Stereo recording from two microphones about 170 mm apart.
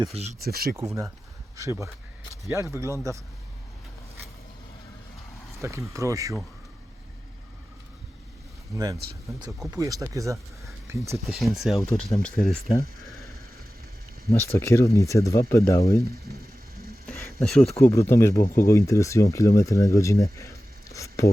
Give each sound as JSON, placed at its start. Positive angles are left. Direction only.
{"t": 0.0, "sound": "speech", "side_deg": -35}
{"t": 0.3, "sound": "speech", "side_deg": -60}
{"t": 0.8, "sound": "speech", "side_deg": -20}
{"t": 5.6, "sound": "speech", "side_deg": -15}
{"t": 8.7, "sound": "speech", "side_deg": -20}
{"t": 11.3, "sound": "speech", "side_deg": 0}
{"t": 14.3, "sound": "speech", "side_deg": 15}
{"t": 17.4, "sound": "speech", "side_deg": 0}
{"t": 17.7, "sound": "speech", "side_deg": 15}